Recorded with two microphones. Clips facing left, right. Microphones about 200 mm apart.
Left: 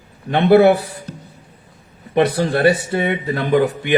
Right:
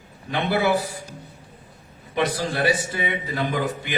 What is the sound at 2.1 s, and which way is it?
Speech, 60° left (ahead or behind).